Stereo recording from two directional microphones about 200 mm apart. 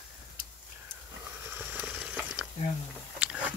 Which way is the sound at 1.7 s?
5° right (ahead or behind).